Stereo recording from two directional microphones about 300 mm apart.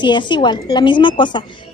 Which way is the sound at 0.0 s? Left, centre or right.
Centre.